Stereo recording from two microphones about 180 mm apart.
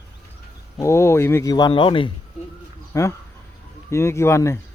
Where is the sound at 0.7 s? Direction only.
15° left (ahead or behind).